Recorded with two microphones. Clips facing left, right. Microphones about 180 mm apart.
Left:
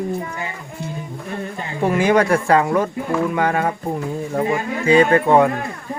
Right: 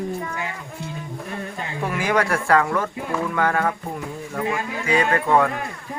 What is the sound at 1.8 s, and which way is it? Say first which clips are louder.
Speech: left 6 dB; 25° left (ahead or behind).